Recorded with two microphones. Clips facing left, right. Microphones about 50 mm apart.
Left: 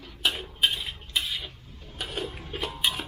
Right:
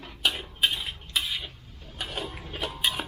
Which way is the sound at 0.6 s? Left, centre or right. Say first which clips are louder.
Left 1 dB; centre.